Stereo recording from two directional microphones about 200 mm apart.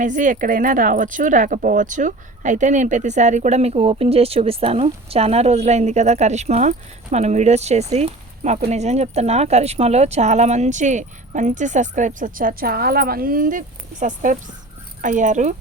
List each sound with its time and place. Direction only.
0.0 s speech: 40° right (ahead or behind)